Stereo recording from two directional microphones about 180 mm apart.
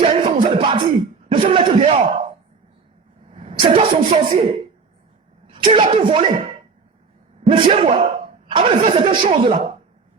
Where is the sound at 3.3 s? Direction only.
30° right (ahead or behind).